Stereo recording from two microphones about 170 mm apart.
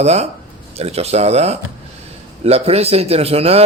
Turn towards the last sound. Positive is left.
turn(degrees=-35)  # may be behind; listen again after turning